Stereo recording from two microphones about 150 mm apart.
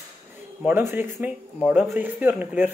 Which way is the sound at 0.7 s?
15° right (ahead or behind).